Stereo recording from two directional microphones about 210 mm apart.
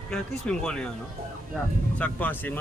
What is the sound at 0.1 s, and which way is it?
Speech, 5° left (ahead or behind).